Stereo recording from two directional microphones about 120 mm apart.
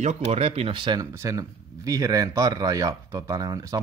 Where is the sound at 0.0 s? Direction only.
65° right (ahead or behind); by 1.0 s 40° right (ahead or behind).